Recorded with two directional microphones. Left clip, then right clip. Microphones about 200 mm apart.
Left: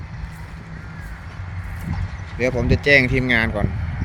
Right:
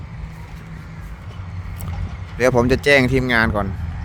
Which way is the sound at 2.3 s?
45° right (ahead or behind).